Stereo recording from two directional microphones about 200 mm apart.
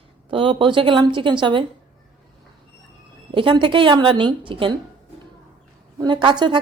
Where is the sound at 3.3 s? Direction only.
25° right (ahead or behind).